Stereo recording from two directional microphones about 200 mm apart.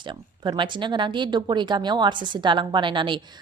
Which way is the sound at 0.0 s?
25° right (ahead or behind).